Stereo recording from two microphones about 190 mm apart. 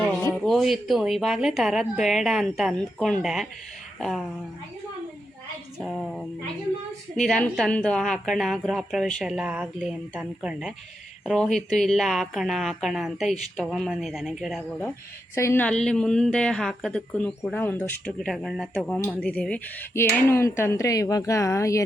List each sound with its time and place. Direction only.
0.4 s a woman's voice: centre (ahead or behind)
5.8 s a woman's voice: centre (ahead or behind)